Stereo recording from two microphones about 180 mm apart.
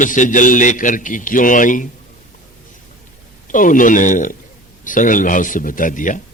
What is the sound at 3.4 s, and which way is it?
A man's voice, 45° left (ahead or behind).